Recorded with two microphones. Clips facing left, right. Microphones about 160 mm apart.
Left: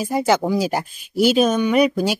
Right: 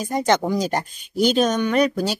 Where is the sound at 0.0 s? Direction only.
5° left (ahead or behind).